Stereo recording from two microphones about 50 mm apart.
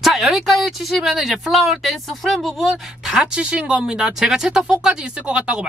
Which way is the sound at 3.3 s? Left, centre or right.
Right.